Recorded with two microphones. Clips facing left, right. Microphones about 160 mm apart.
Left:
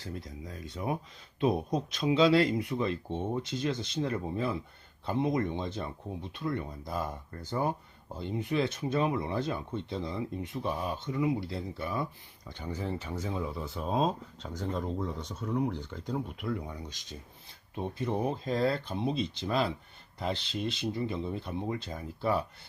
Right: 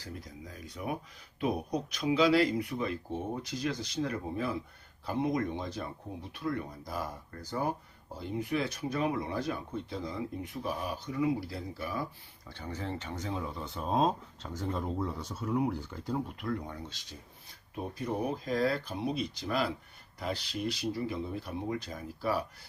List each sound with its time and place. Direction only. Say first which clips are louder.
0.0 s speech: left 3 dB; 25° left (ahead or behind); by 16.5 s 5° right (ahead or behind)
16.6 s speech: left 1 dB; 10° left (ahead or behind)